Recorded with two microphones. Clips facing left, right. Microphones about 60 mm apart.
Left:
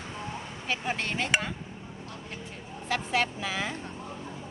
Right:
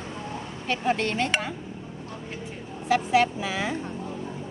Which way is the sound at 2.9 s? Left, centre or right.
Centre.